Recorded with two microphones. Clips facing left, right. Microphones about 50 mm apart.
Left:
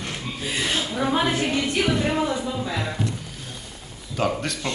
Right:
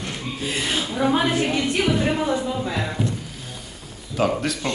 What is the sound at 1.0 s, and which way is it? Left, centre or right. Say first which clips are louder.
Speech: right 3 dB; centre.